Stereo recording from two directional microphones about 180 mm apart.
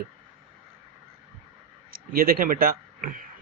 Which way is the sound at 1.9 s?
55° right (ahead or behind).